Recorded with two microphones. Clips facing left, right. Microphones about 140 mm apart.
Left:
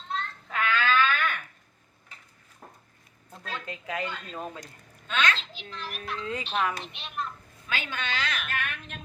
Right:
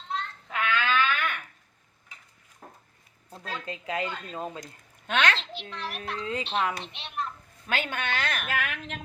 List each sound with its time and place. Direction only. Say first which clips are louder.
0.1 s a sound: even; 20° right (ahead or behind)
3.3 s speech: right 1 dB; 35° right (ahead or behind)
4.6 s a sound: right 3 dB; 70° right (ahead or behind)
5.7 s a child's voice: right 2 dB; 75° right (ahead or behind)
6.2 s speech: right 1 dB; 25° right (ahead or behind)
7.7 s a woman's voice: right 3 dB; 55° right (ahead or behind)
8.4 s a woman's voice: right 3 dB; 90° right